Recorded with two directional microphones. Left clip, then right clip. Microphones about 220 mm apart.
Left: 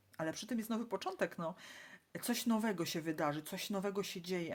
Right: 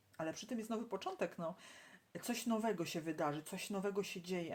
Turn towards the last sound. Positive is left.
turn(degrees=35)  # may be behind; listen again after turning